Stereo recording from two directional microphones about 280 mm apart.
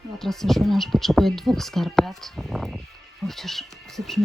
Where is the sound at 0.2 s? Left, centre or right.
Centre.